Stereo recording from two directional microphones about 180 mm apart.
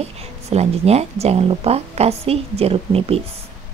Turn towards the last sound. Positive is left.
turn(degrees=-30)  # may be behind; listen again after turning